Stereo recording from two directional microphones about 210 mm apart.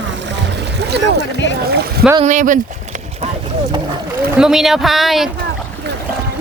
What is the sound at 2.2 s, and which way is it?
Speech, 35° right (ahead or behind).